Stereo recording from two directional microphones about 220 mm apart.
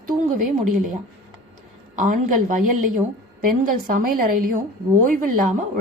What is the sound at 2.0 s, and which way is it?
Speech, 40° right (ahead or behind).